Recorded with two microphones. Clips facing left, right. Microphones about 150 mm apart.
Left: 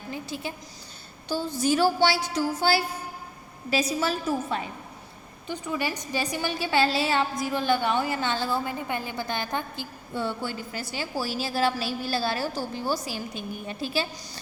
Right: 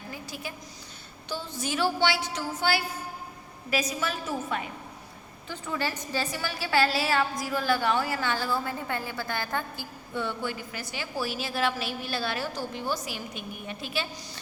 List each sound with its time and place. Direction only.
0.1 s a sound: 25° left (ahead or behind)
1.3 s a woman's voice: 35° left (ahead or behind)
5.5 s a woman's voice: 15° left (ahead or behind)
10.2 s a woman's voice: 30° left (ahead or behind)